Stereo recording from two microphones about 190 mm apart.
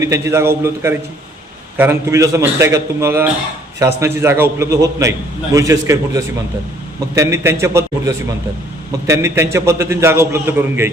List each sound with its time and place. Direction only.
0.0 s a man's voice: 15° right (ahead or behind)